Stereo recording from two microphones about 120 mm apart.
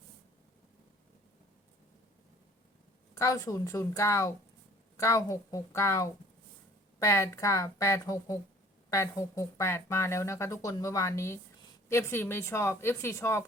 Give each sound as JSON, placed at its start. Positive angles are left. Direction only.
{"t": 3.2, "sound": "speech", "side_deg": 30}